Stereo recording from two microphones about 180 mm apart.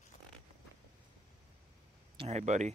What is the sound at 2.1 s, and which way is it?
Speech, 35° right (ahead or behind).